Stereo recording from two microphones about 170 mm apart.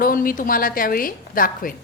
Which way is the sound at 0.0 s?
55° left (ahead or behind).